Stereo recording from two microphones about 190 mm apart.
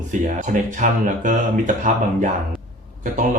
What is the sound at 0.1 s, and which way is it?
Speech, 40° right (ahead or behind).